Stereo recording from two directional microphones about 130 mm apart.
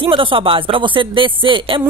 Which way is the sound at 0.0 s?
40° right (ahead or behind).